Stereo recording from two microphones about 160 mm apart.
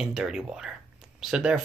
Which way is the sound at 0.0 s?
5° right (ahead or behind).